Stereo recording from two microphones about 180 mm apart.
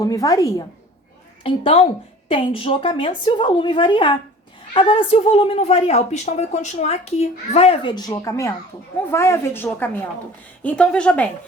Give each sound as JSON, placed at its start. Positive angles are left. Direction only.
{"t": 0.0, "sound": "a woman's voice", "side_deg": 20}
{"t": 1.5, "sound": "a woman's voice", "side_deg": 30}